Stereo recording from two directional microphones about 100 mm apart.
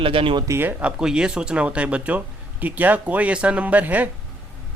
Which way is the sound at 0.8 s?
10° right (ahead or behind).